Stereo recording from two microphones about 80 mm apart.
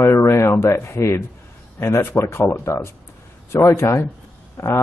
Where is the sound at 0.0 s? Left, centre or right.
Left.